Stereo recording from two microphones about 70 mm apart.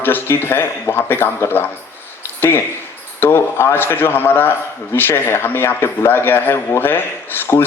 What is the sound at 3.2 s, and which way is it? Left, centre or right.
Speech, left.